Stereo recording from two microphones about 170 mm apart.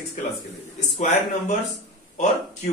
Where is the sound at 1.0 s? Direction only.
45° left (ahead or behind).